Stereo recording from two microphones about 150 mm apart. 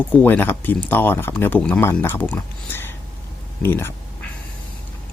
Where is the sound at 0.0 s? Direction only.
10° left (ahead or behind).